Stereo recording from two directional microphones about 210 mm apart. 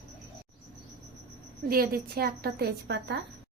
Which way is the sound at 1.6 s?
45° right (ahead or behind).